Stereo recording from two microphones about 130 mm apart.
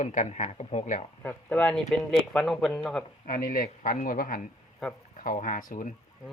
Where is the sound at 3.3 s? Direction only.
90° left.